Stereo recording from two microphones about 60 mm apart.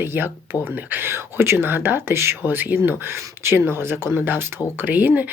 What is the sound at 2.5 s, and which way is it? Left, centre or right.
Speech, right.